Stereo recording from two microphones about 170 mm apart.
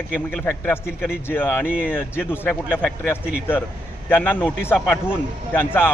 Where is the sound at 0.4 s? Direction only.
15° left (ahead or behind).